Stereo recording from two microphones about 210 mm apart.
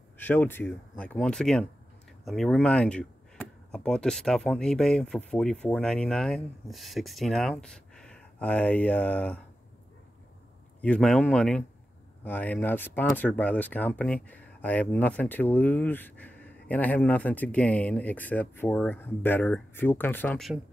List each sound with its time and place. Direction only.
0.2 s speech: 10° left (ahead or behind)
10.8 s speech: 5° left (ahead or behind)